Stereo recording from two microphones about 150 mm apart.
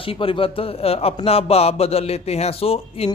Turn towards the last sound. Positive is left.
turn(degrees=40)  # may be behind; listen again after turning